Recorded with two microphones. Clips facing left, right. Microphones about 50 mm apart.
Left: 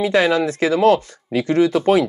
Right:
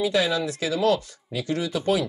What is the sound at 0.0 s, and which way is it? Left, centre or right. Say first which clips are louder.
Speech: left 7 dB; left.